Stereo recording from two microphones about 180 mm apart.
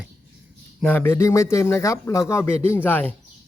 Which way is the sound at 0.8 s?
10° left (ahead or behind).